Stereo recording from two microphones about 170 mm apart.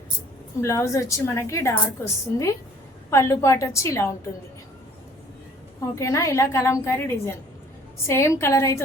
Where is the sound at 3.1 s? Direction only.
15° left (ahead or behind).